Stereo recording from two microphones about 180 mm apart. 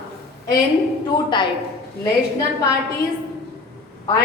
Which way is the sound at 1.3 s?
25° left (ahead or behind).